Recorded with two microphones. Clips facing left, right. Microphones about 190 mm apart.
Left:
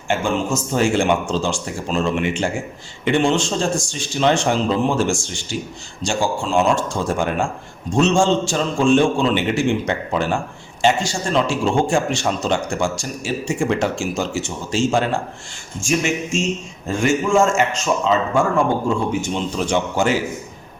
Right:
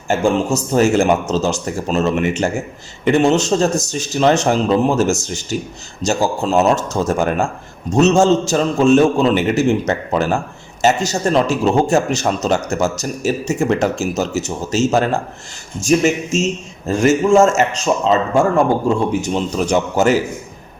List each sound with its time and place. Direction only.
0.1 s speech: 40° right (ahead or behind)
19.2 s speech: 40° right (ahead or behind)